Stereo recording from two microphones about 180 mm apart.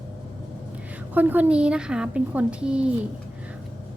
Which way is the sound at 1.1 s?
10° right (ahead or behind).